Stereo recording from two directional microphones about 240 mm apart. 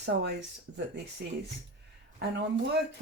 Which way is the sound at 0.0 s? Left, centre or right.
Right.